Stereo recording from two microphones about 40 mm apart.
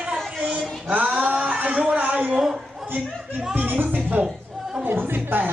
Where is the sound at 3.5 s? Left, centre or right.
Right.